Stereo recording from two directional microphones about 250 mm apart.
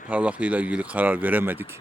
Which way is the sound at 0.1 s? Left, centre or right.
Centre.